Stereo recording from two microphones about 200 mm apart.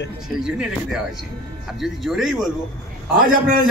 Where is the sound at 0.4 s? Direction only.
5° right (ahead or behind).